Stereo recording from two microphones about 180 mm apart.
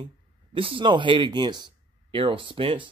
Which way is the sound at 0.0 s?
30° right (ahead or behind).